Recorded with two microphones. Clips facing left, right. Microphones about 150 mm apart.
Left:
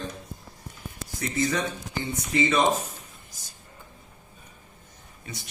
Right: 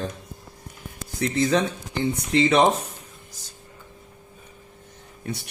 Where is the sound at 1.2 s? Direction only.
60° right (ahead or behind).